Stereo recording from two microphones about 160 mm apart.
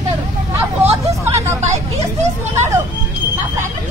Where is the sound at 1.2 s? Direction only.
15° right (ahead or behind).